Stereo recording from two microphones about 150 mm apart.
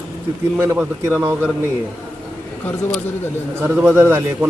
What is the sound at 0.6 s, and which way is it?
Speech, 15° right (ahead or behind).